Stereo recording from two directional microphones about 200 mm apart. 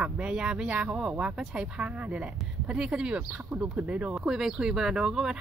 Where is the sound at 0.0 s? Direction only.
5° right (ahead or behind).